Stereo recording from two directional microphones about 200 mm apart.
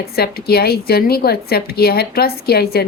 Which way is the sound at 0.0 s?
50° left (ahead or behind).